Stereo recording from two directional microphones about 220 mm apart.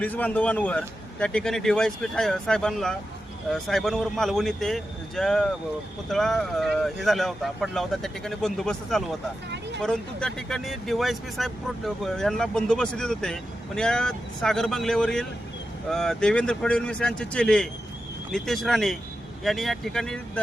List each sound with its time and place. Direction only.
0.0 s speech: 5° left (ahead or behind)